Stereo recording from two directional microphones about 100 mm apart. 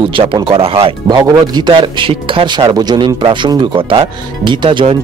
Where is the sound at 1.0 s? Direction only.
45° right (ahead or behind).